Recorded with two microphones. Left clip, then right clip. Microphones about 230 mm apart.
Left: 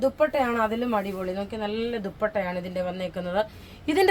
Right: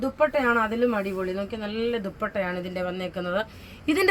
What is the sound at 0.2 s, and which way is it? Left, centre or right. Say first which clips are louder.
Speech: right 1 dB; left.